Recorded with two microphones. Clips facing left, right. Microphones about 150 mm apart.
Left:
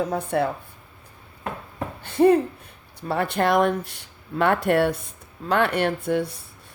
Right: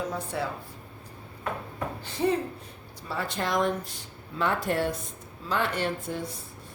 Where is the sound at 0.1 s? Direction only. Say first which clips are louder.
Left 8 dB; 60° left (ahead or behind).